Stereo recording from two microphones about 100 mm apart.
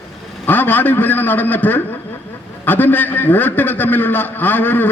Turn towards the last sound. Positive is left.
turn(degrees=20)  # may be behind; listen again after turning